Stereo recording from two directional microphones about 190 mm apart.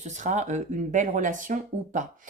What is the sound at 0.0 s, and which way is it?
Speech, 40° right (ahead or behind).